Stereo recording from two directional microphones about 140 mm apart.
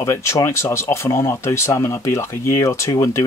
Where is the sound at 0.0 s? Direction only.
20° left (ahead or behind).